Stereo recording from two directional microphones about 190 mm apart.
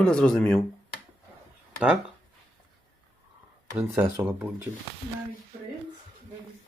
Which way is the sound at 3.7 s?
15° right (ahead or behind).